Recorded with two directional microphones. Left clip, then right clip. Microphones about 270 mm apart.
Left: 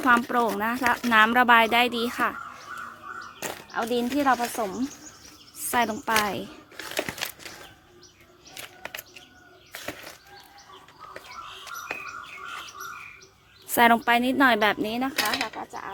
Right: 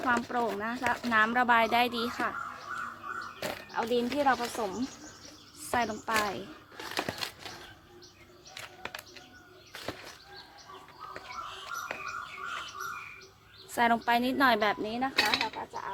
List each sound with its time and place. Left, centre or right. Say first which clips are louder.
0.0 s speech: left 8 dB; left
2.8 s crow: even; centre
3.8 s speech: left 3 dB; left
8.8 s a sound: left 3 dB; centre
11.6 s bird: left 4 dB; centre
13.7 s speech: left 7 dB; left